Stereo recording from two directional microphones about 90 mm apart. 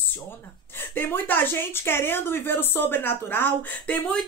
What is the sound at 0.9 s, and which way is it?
Speech, 20° left (ahead or behind).